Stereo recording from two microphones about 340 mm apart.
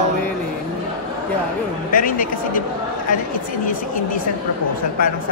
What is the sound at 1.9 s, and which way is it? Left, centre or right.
Speech, left.